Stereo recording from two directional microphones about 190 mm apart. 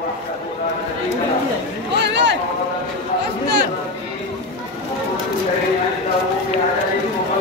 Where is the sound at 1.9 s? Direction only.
65° right (ahead or behind).